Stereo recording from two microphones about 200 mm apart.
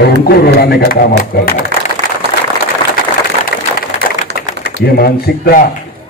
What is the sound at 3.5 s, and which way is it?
Vehicle, 50° left (ahead or behind).